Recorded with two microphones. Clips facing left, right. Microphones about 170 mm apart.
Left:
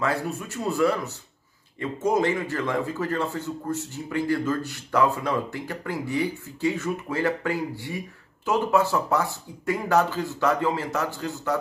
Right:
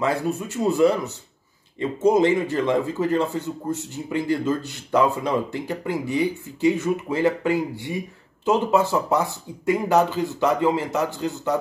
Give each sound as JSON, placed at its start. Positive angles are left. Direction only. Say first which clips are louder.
{"t": 0.0, "sound": "speech", "louder": "right 4 dB", "side_deg": -20}